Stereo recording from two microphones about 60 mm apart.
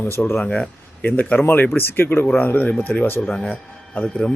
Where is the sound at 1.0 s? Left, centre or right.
Left.